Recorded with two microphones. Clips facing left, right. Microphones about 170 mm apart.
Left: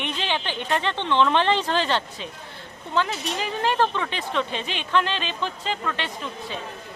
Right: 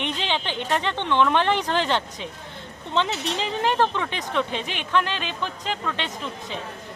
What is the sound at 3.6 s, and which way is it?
Speech, 15° right (ahead or behind).